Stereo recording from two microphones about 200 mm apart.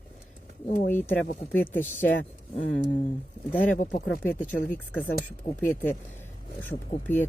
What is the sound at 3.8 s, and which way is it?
Speech, 45° left (ahead or behind).